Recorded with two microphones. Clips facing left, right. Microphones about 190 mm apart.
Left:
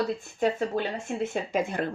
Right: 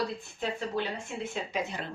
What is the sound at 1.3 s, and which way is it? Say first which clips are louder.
Speech: left 6 dB; 50° left (ahead or behind).